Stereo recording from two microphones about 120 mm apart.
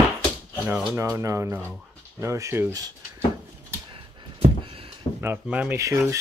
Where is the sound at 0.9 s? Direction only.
25° right (ahead or behind).